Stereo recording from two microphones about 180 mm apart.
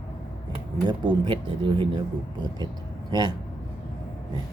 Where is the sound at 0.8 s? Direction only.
25° right (ahead or behind).